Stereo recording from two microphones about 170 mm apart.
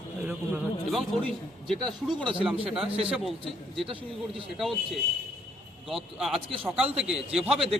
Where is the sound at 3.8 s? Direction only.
30° right (ahead or behind).